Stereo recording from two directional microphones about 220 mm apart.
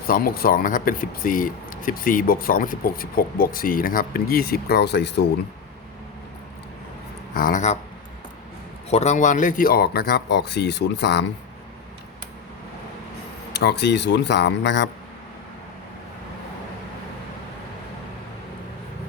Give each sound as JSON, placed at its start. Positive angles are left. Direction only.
{"t": 0.1, "sound": "speech", "side_deg": 40}
{"t": 7.3, "sound": "speech", "side_deg": 40}
{"t": 8.9, "sound": "speech", "side_deg": 30}
{"t": 13.5, "sound": "speech", "side_deg": 50}